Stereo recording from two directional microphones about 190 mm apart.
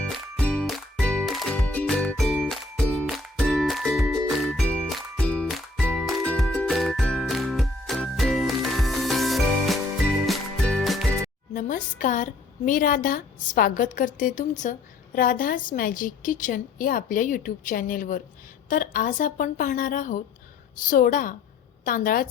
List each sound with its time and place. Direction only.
0.0 s music: 5° left (ahead or behind)
11.5 s a woman's voice: 45° left (ahead or behind)